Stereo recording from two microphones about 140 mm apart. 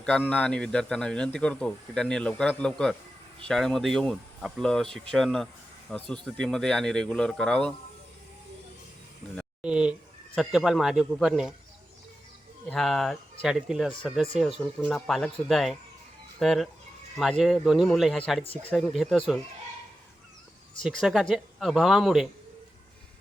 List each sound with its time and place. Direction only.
0.0 s a man's voice: 5° left (ahead or behind)
9.6 s speech: 5° right (ahead or behind)
12.6 s speech: centre (ahead or behind)
18.5 s a man's voice: 10° left (ahead or behind)
18.8 s speech: centre (ahead or behind)
20.8 s speech: centre (ahead or behind)